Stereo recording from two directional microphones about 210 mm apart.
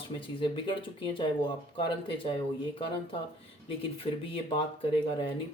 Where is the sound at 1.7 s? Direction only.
25° left (ahead or behind).